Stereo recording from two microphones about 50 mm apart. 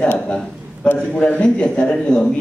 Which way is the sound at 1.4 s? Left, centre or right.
Centre.